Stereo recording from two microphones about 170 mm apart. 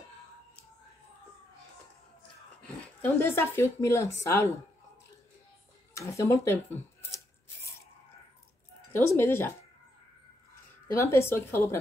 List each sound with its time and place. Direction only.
2.6 s speech: 10° left (ahead or behind)
5.9 s speech: 15° left (ahead or behind)
8.9 s speech: 15° left (ahead or behind)
11.0 s speech: 15° left (ahead or behind)